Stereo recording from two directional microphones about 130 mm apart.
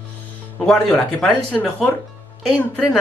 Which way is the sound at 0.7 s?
5° left (ahead or behind).